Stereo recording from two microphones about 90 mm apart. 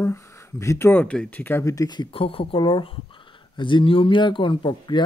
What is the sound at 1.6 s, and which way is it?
Speech, 40° left (ahead or behind).